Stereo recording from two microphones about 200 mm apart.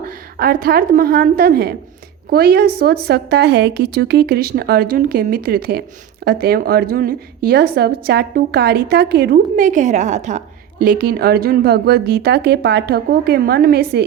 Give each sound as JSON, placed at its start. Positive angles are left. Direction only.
{"t": 0.3, "sound": "a woman's voice", "side_deg": -45}